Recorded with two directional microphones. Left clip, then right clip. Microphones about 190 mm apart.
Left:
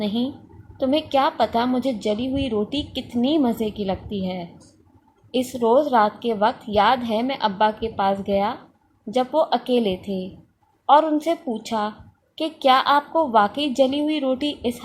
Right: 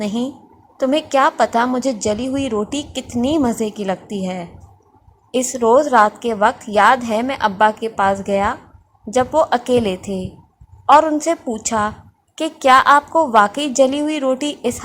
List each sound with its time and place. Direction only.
0.0 s a woman's voice: 15° right (ahead or behind)